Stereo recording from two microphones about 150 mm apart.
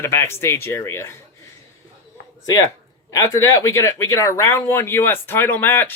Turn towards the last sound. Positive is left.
turn(degrees=15)  # may be behind; listen again after turning